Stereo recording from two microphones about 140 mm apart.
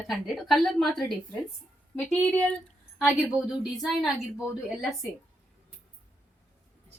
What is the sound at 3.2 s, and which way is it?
A woman's voice, 5° right (ahead or behind).